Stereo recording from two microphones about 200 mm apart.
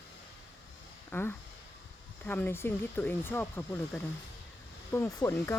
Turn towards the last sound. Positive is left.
turn(degrees=10)  # may be behind; listen again after turning